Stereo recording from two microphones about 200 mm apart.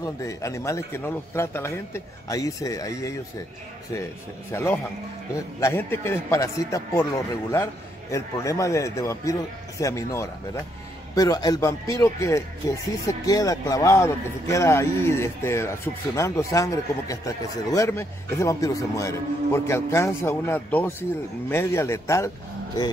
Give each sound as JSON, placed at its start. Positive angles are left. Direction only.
{"t": 0.0, "sound": "speech", "side_deg": 15}